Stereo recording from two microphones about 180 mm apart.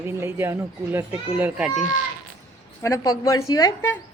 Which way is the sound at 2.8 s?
20° left (ahead or behind).